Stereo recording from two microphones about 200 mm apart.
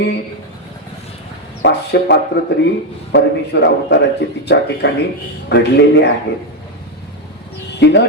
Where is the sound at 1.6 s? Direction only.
60° left (ahead or behind).